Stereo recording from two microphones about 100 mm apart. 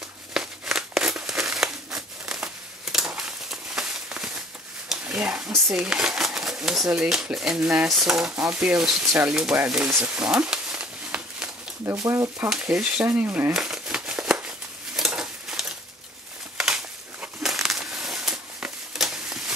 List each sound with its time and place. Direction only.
0.3 s crumpling: 5° right (ahead or behind)
4.9 s a sound: 15° right (ahead or behind)
5.7 s speech: 5° right (ahead or behind)
9.8 s speech: 20° right (ahead or behind)
10.1 s a sound: 10° right (ahead or behind)
11.8 s speech: 25° right (ahead or behind)
12.4 s speech: 10° right (ahead or behind)
13.5 s crumpling: 5° right (ahead or behind)
15.0 s a sound: 5° right (ahead or behind)
16.5 s crumpling: 5° right (ahead or behind)